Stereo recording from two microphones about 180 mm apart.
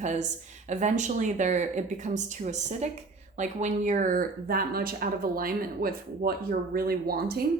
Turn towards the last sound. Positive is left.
turn(degrees=-60)  # may be behind; listen again after turning